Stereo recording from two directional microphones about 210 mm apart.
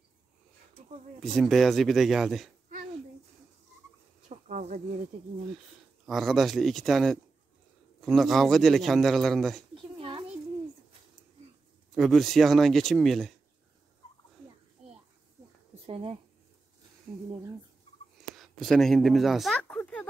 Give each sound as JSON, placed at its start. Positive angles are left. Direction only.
{"t": 1.2, "sound": "a man's voice", "side_deg": 0}
{"t": 4.3, "sound": "a sound", "side_deg": -35}
{"t": 6.0, "sound": "a man's voice", "side_deg": 0}
{"t": 9.9, "sound": "a sound", "side_deg": -25}
{"t": 11.9, "sound": "a man's voice", "side_deg": 0}
{"t": 15.9, "sound": "speech", "side_deg": -30}
{"t": 18.2, "sound": "speech", "side_deg": 0}